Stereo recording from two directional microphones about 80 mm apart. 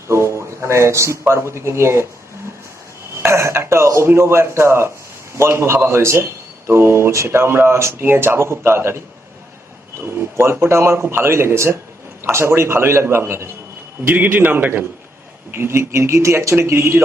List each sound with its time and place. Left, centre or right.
0.1 s speech: right
3.2 s a sound: right
5.4 s speech: right
10.0 s a man's voice: right